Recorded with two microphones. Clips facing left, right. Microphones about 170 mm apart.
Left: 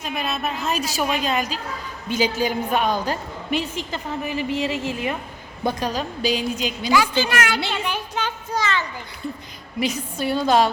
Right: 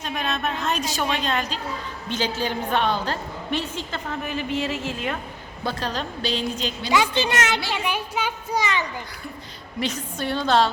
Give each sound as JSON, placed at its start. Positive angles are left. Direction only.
{"t": 0.0, "sound": "a woman's voice", "side_deg": 5}
{"t": 6.9, "sound": "a child's voice", "side_deg": -20}
{"t": 7.9, "sound": "a sound", "side_deg": -10}
{"t": 9.8, "sound": "a woman's voice", "side_deg": 10}